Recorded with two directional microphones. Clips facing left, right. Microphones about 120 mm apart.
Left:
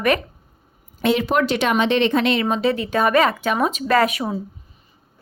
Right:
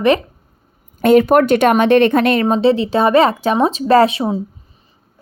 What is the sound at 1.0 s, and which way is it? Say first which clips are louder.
A woman's voice: right 8 dB; 50° right (ahead or behind).